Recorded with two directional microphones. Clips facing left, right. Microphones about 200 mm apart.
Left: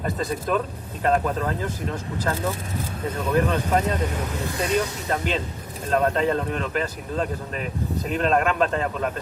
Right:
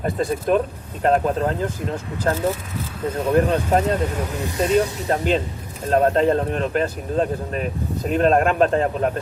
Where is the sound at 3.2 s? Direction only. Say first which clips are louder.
Right 4 dB; 40° right (ahead or behind).